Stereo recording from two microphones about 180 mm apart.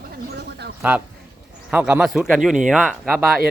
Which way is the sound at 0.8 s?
10° right (ahead or behind).